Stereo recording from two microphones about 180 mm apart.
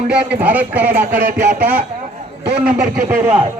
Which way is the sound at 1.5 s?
10° right (ahead or behind).